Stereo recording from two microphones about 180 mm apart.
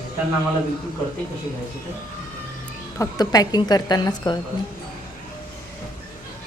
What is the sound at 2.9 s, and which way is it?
A woman's voice, 20° left (ahead or behind).